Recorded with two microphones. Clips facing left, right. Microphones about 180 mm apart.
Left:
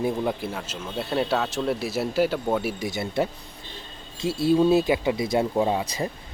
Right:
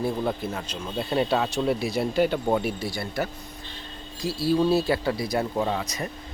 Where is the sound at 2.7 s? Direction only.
20° left (ahead or behind).